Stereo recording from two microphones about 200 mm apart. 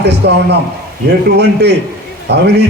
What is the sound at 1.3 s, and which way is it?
Speech, 55° right (ahead or behind).